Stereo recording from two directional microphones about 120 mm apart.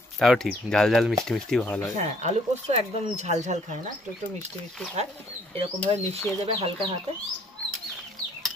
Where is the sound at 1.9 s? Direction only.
75° right (ahead or behind).